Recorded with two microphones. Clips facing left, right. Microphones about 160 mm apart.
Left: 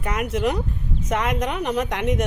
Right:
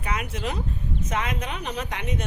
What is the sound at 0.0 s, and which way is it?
Speech, 60° left (ahead or behind).